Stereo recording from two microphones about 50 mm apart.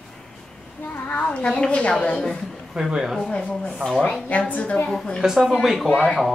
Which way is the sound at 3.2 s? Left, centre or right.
Centre.